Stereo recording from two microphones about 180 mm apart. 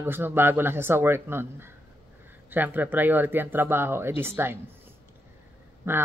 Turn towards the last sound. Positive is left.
turn(degrees=-15)  # may be behind; listen again after turning